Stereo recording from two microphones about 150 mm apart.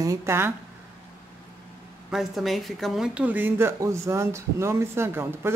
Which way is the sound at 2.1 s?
Centre (ahead or behind).